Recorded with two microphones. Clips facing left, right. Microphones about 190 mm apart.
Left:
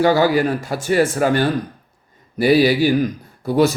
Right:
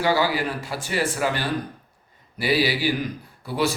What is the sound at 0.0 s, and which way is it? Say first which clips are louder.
A man's voice: left 7 dB; 50° left (ahead or behind).